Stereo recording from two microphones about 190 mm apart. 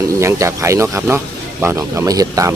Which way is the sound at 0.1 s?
15° right (ahead or behind).